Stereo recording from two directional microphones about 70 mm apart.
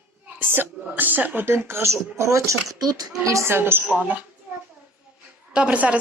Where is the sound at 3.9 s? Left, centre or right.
Right.